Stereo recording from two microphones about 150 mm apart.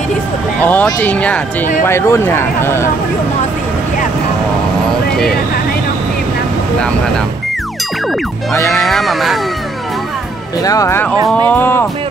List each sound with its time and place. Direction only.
0.6 s speech: 10° left (ahead or behind)
8.7 s a sound: centre (ahead or behind)
10.6 s speech: 25° left (ahead or behind)